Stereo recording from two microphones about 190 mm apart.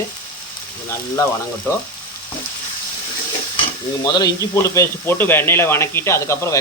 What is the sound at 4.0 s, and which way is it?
Speech, 20° left (ahead or behind).